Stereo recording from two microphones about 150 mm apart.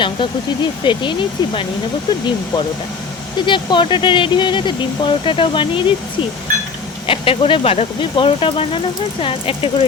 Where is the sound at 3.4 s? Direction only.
30° left (ahead or behind).